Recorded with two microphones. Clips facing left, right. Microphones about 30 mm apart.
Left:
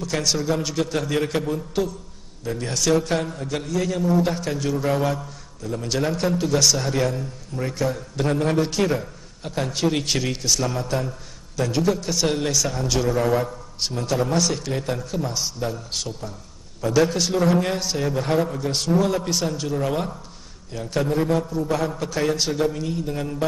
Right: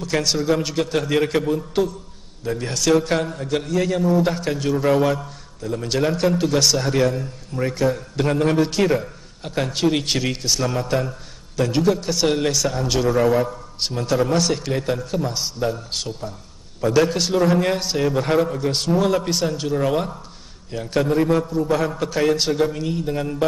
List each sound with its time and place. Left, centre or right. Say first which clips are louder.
0.0 s a man's voice: right 3 dB; centre